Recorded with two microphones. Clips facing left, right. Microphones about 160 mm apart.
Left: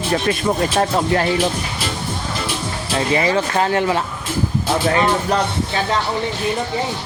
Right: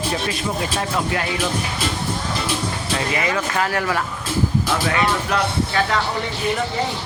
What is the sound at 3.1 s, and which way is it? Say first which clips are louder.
Speech: left 6 dB; 30° left (ahead or behind).